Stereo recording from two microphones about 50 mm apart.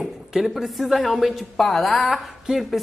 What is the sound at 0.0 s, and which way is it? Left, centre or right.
A woman's voice, centre.